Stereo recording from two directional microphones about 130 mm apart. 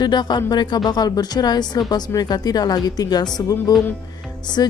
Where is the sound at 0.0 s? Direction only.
35° left (ahead or behind).